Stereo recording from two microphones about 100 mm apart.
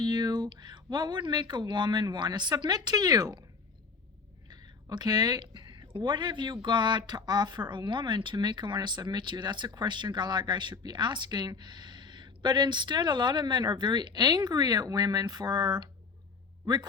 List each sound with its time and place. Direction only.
0.0 s speech: 45° right (ahead or behind)
4.4 s speech: 45° right (ahead or behind)